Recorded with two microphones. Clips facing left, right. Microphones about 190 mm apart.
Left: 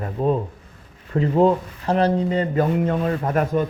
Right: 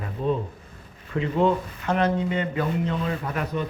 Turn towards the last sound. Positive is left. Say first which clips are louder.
# left 7 dB
turn(degrees=45)  # may be behind; listen again after turning